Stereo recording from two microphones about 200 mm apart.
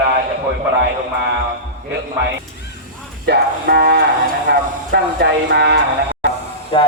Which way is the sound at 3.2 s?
55° right (ahead or behind).